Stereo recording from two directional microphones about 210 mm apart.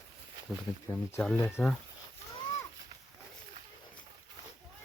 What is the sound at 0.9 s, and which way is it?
Speech, 10° left (ahead or behind).